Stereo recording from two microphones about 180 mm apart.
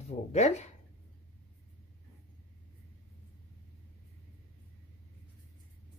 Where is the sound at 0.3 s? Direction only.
40° left (ahead or behind).